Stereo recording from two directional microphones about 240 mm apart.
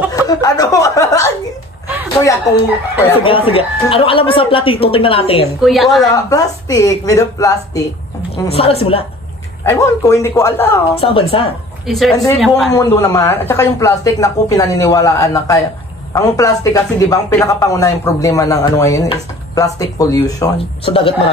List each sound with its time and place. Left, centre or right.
0.1 s chuckle: centre
3.3 s speech: left
5.6 s a woman's voice: centre
6.3 s speech: centre
8.4 s speech: left
9.7 s speech: centre
11.0 s speech: left
11.9 s a woman's voice: centre
12.7 s speech: centre